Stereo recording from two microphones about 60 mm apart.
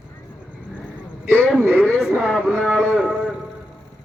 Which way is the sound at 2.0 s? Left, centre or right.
Centre.